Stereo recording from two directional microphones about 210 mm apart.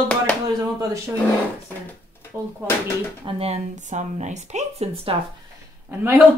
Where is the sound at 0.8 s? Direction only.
15° right (ahead or behind).